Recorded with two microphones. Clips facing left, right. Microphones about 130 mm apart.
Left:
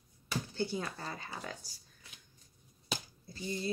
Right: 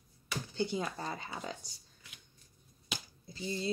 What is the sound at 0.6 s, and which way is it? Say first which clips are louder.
Speech: right 4 dB; 20° right (ahead or behind).